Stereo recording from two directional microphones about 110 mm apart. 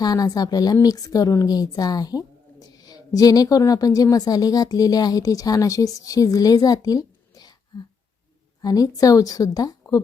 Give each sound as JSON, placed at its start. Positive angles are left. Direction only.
{"t": 0.0, "sound": "a woman's voice", "side_deg": 35}